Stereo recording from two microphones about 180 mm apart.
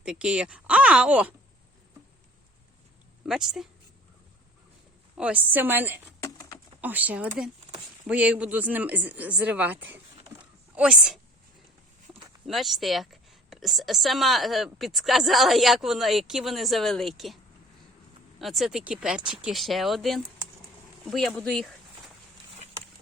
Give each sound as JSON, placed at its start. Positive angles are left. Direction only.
{"t": 0.0, "sound": "speech", "side_deg": -5}
{"t": 3.2, "sound": "a woman's voice", "side_deg": 0}
{"t": 5.1, "sound": "speech", "side_deg": -5}
{"t": 6.1, "sound": "a sound", "side_deg": 15}
{"t": 6.8, "sound": "a woman's voice", "side_deg": -10}
{"t": 12.5, "sound": "a woman's voice", "side_deg": 0}
{"t": 18.3, "sound": "a woman's voice", "side_deg": 0}